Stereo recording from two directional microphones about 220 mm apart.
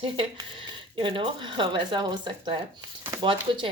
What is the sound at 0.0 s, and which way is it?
Speech, 25° right (ahead or behind).